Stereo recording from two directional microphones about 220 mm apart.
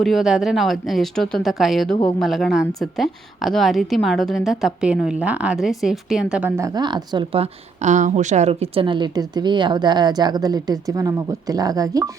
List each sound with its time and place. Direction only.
0.0 s a woman's voice: centre (ahead or behind); by 12.1 s 15° right (ahead or behind)